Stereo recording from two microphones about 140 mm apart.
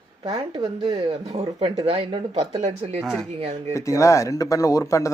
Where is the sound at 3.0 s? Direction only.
5° right (ahead or behind).